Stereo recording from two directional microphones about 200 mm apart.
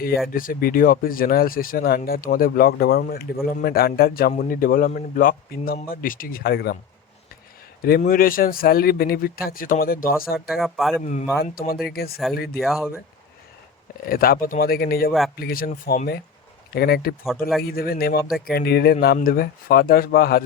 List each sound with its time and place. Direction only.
0.3 s a man's voice: 45° left (ahead or behind)
7.8 s a man's voice: 50° left (ahead or behind)
10.3 s speech: centre (ahead or behind)
11.0 s a man's voice: 35° left (ahead or behind)
12.5 s speech: centre (ahead or behind)
14.1 s a man's voice: 45° left (ahead or behind)